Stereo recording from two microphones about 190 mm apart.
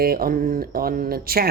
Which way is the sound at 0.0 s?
50° right (ahead or behind).